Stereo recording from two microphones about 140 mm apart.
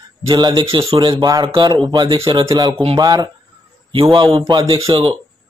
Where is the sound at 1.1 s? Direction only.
30° right (ahead or behind).